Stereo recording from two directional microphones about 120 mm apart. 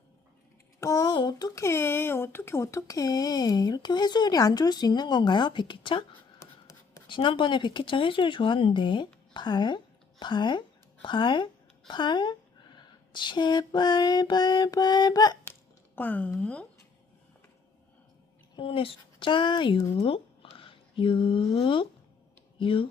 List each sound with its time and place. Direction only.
0.8 s speech: 30° left (ahead or behind)
7.1 s a woman's voice: 45° left (ahead or behind)
16.0 s speech: 15° left (ahead or behind)
18.5 s speech: 50° left (ahead or behind)